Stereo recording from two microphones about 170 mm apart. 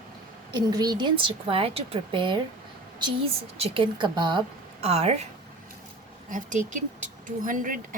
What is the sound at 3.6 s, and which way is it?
Speech, 30° right (ahead or behind).